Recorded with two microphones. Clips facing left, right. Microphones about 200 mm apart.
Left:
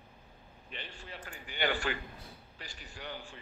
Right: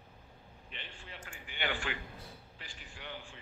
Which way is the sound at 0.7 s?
40° left (ahead or behind).